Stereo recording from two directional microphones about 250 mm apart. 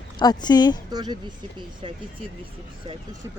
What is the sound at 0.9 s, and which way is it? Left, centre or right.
Speech, centre.